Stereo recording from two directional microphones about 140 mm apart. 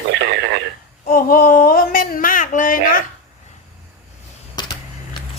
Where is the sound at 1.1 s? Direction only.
90° left.